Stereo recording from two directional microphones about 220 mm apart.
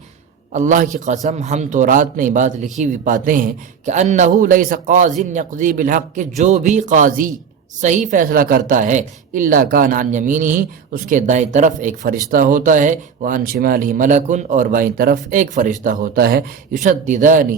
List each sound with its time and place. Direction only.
0.5 s speech: 35° right (ahead or behind)